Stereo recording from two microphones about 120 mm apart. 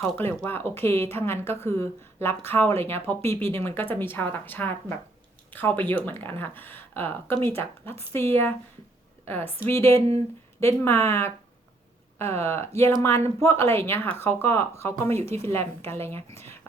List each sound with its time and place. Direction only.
0.2 s a woman's voice: 20° left (ahead or behind)